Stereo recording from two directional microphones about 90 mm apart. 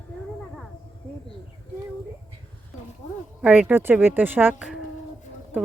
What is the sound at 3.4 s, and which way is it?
Speech, 20° right (ahead or behind).